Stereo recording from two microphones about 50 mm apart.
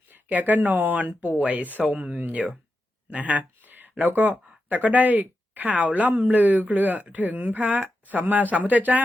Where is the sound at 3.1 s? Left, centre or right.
Right.